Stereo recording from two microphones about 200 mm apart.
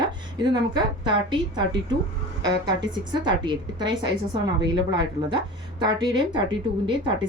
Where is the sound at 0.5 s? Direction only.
20° right (ahead or behind).